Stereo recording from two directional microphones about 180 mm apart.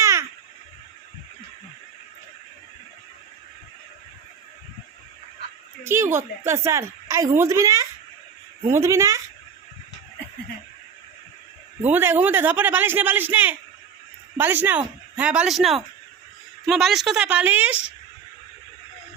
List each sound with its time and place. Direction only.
0.0 s a sound: 15° right (ahead or behind)
5.8 s a woman's voice: 15° right (ahead or behind)
11.8 s a woman's voice: 10° right (ahead or behind)